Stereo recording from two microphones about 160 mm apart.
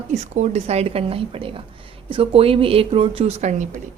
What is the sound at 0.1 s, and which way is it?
Speech, 40° right (ahead or behind).